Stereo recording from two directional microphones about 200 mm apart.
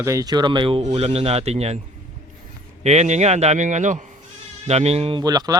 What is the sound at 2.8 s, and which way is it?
A man's voice, 35° right (ahead or behind).